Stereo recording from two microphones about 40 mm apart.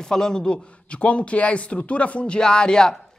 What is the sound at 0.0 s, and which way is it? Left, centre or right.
A man's voice, centre.